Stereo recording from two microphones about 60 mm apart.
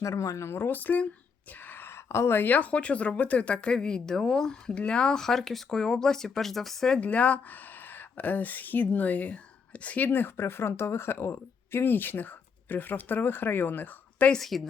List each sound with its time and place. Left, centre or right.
0.0 s speech: left
1.8 s speech: left; by 7.0 s centre
7.0 s speech: left
14.3 s a woman's voice: centre